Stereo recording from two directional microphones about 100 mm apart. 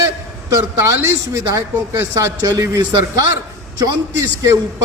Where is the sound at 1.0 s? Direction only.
35° right (ahead or behind).